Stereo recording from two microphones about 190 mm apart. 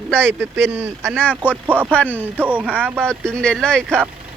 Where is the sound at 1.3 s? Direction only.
10° right (ahead or behind).